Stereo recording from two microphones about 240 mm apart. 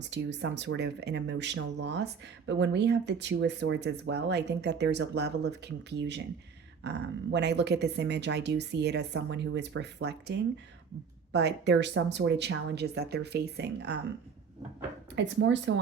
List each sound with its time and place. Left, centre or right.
0.0 s speech: right
15.1 s speech: right